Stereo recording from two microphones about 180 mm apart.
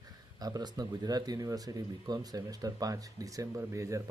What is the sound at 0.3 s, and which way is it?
Speech, 20° right (ahead or behind).